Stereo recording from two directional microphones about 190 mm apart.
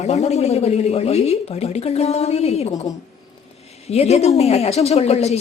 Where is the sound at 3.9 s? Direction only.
35° left (ahead or behind).